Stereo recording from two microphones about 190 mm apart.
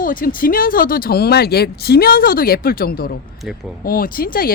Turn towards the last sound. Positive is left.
turn(degrees=50)  # may be behind; listen again after turning